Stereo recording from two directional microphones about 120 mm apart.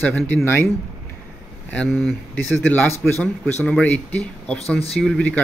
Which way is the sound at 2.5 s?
15° left (ahead or behind).